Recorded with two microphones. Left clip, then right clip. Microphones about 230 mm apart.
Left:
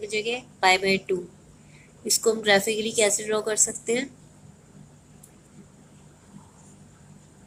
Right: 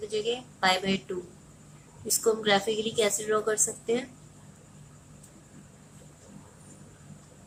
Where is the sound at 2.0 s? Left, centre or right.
Centre.